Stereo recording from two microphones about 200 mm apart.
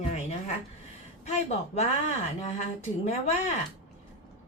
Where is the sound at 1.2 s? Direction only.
35° left (ahead or behind).